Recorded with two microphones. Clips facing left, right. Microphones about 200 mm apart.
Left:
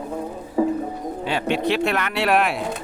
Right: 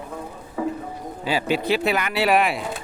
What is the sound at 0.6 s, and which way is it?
Music, 25° left (ahead or behind).